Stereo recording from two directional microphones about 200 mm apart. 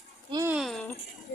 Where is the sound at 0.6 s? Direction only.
Centre (ahead or behind).